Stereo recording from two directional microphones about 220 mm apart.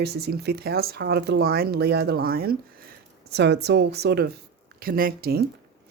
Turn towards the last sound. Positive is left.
turn(degrees=-45)  # may be behind; listen again after turning